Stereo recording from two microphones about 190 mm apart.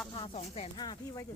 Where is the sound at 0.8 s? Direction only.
20° left (ahead or behind).